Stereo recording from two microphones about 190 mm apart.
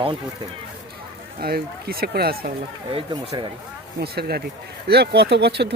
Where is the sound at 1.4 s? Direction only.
50° right (ahead or behind).